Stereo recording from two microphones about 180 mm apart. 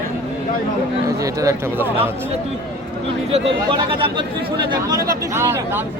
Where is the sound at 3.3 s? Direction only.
30° right (ahead or behind).